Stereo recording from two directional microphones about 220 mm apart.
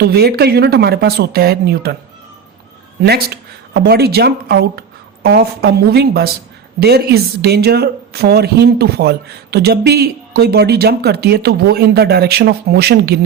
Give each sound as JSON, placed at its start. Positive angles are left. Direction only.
{"t": 0.0, "sound": "speech", "side_deg": -45}
{"t": 3.0, "sound": "speech", "side_deg": -50}